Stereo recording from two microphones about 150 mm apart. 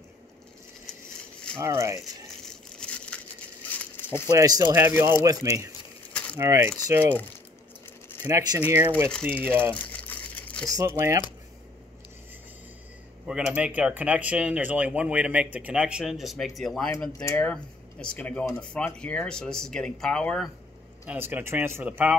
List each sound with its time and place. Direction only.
1.6 s speech: 20° right (ahead or behind)
2.8 s a sound: 5° left (ahead or behind)
4.3 s speech: 25° right (ahead or behind)
8.3 s speech: 25° right (ahead or behind)
9.8 s crumpling: 10° left (ahead or behind)
10.7 s speech: 20° right (ahead or behind)
13.3 s speech: 5° right (ahead or behind)
17.2 s speech: 15° left (ahead or behind)
21.1 s speech: 10° right (ahead or behind)